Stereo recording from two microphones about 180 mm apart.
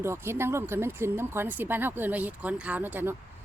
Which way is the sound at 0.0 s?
15° right (ahead or behind).